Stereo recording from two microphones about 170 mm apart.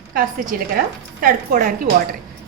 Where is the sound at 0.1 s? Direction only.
55° right (ahead or behind).